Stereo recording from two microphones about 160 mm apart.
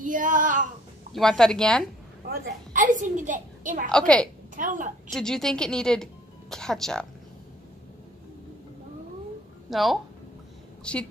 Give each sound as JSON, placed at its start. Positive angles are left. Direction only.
{"t": 0.0, "sound": "female singing", "side_deg": -55}
{"t": 1.1, "sound": "speech", "side_deg": 5}
{"t": 2.2, "sound": "a woman's voice", "side_deg": -60}
{"t": 3.9, "sound": "speech", "side_deg": 5}
{"t": 4.6, "sound": "a woman's voice", "side_deg": -55}
{"t": 5.1, "sound": "speech", "side_deg": 5}
{"t": 9.7, "sound": "a woman's voice", "side_deg": 0}